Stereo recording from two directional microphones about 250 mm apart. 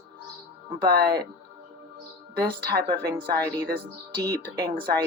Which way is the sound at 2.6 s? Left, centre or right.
Right.